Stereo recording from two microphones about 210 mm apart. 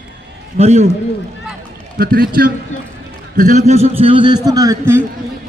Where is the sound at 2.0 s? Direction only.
45° right (ahead or behind); by 5.0 s 15° right (ahead or behind).